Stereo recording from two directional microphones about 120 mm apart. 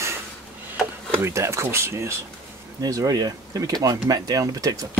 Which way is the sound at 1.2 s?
25° right (ahead or behind).